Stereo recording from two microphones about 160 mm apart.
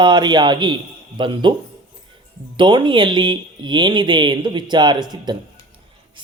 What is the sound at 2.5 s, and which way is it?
Speech, 30° right (ahead or behind).